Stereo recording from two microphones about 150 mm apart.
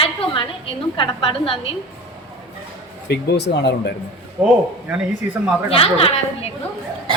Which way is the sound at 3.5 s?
75° left (ahead or behind).